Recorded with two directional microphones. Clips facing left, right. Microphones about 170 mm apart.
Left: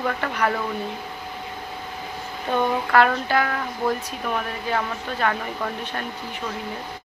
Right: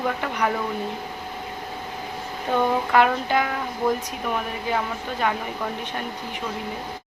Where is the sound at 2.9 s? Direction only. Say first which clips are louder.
Even; 15° right (ahead or behind).